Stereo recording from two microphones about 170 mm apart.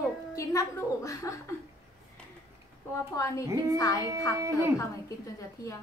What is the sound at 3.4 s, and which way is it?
A woman's voice, 20° right (ahead or behind).